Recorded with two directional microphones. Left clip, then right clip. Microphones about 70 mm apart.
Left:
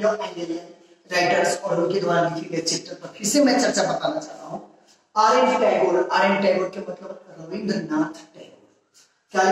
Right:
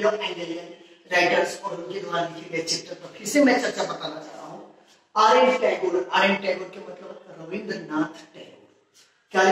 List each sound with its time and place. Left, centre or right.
0.1 s a man's voice: left